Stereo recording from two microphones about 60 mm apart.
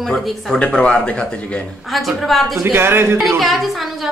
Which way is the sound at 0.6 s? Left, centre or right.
Centre.